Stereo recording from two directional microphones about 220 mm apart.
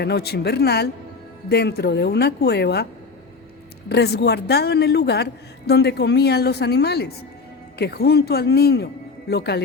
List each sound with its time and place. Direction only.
0.0 s a man's voice: 45° left (ahead or behind)
3.8 s a man's voice: 45° left (ahead or behind)